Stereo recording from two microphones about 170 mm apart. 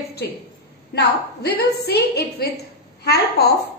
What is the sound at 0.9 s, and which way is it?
A woman's voice, 70° left (ahead or behind).